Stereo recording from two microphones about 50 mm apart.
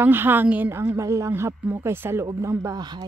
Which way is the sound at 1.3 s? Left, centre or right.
Right.